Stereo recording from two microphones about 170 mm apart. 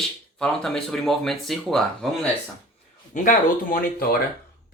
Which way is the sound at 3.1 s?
50° left (ahead or behind).